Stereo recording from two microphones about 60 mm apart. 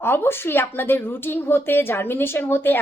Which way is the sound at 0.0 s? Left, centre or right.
Left.